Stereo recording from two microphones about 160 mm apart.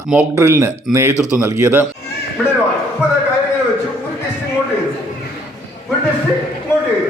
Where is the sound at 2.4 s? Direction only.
10° left (ahead or behind).